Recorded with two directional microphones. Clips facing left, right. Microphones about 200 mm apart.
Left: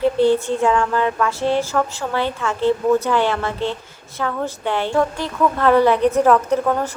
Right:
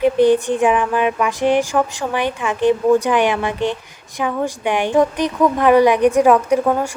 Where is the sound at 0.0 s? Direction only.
15° right (ahead or behind).